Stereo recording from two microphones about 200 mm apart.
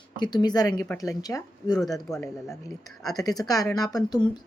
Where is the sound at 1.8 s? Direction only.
Centre (ahead or behind).